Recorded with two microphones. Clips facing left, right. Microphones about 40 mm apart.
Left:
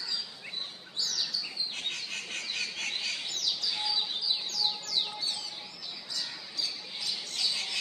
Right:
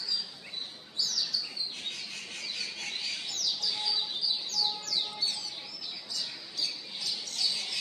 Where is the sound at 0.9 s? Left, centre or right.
Left.